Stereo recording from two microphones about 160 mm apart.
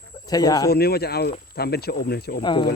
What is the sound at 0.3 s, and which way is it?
Speech, 25° left (ahead or behind).